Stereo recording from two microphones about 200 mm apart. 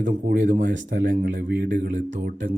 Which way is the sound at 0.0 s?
40° right (ahead or behind).